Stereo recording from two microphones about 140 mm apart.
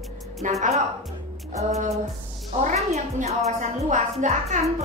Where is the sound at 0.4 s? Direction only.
50° right (ahead or behind).